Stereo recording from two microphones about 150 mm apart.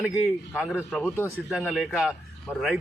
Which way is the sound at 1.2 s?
15° left (ahead or behind).